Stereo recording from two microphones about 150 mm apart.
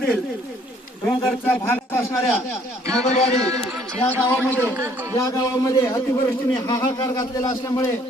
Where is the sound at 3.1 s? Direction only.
45° left (ahead or behind).